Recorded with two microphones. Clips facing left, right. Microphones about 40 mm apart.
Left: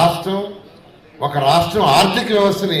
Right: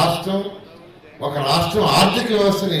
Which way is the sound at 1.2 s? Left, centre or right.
Left.